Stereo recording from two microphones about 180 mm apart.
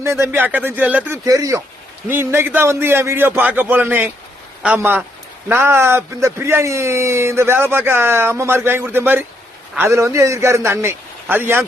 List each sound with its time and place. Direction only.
0.0 s a man's voice: 15° right (ahead or behind)